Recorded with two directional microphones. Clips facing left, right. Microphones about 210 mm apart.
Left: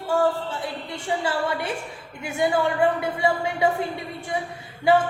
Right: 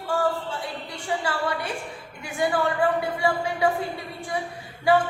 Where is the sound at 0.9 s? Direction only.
25° left (ahead or behind).